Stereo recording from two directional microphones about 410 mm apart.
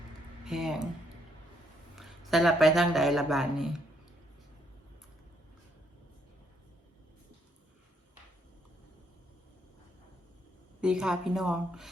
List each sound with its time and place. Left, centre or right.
0.4 s speech: centre
2.0 s speech: centre
10.8 s a woman's voice: centre